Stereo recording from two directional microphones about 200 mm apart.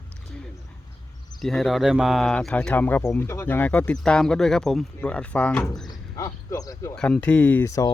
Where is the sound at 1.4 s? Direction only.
Centre (ahead or behind); by 6.9 s 15° left (ahead or behind).